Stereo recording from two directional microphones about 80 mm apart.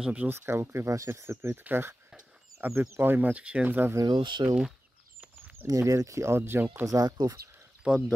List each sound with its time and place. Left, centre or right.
0.0 s speech: centre
0.3 s speech: right
4.1 s speech: right
5.2 s a sound: right
5.7 s speech: right
6.9 s speech: right